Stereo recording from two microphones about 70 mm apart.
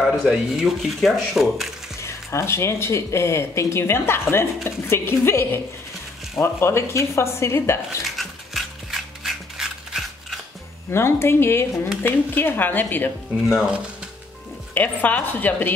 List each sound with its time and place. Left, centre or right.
0.5 s speech: centre
2.0 s speech: left
8.0 s mechanisms: centre
10.9 s speech: left
13.6 s speech: centre
14.7 s speech: left